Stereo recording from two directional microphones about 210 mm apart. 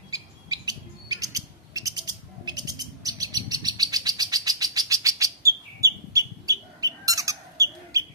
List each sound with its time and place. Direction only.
0.1 s bird: 15° right (ahead or behind)